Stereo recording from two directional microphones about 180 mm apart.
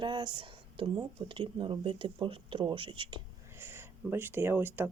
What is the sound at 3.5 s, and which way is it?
Speech, 15° right (ahead or behind).